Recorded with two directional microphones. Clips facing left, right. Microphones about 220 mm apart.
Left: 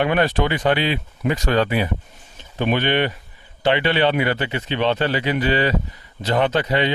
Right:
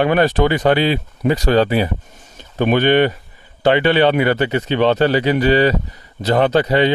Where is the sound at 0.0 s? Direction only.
40° right (ahead or behind).